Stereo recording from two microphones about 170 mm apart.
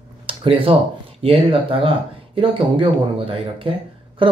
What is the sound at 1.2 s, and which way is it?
Speech, 30° right (ahead or behind).